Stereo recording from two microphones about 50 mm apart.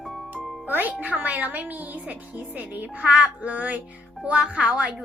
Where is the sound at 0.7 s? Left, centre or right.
Right.